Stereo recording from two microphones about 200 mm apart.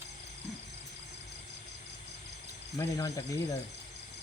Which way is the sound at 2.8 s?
15° left (ahead or behind).